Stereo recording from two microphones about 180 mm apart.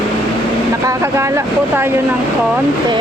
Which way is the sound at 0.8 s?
15° right (ahead or behind).